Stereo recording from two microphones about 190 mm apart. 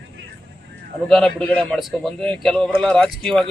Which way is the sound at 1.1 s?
5° left (ahead or behind).